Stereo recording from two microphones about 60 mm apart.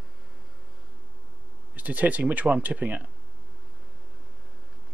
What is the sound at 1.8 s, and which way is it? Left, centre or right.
Speech, right.